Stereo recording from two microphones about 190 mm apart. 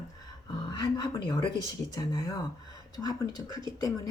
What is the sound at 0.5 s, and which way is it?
Speech, 20° left (ahead or behind).